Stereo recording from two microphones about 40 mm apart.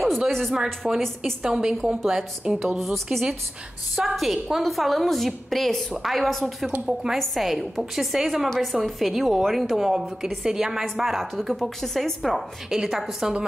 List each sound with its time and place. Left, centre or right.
0.3 s a woman's voice: centre
1.4 s a woman's voice: centre
2.8 s a woman's voice: centre
6.0 s a woman's voice: centre
6.9 s a woman's voice: centre
7.2 s a woman's voice: centre
9.8 s a woman's voice: centre
11.1 s a woman's voice: centre
12.6 s a woman's voice: centre